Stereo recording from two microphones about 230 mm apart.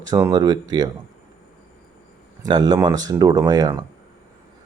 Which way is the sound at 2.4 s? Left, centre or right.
Centre.